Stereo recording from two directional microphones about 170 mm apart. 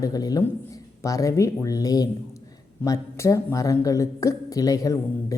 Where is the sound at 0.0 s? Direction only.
20° left (ahead or behind).